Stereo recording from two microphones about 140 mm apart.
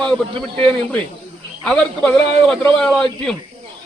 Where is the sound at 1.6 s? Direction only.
5° left (ahead or behind).